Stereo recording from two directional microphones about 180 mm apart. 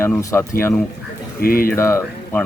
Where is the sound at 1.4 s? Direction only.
55° left (ahead or behind).